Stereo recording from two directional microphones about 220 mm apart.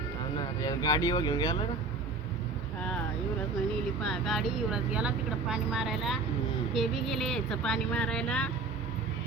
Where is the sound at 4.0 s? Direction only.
Centre (ahead or behind).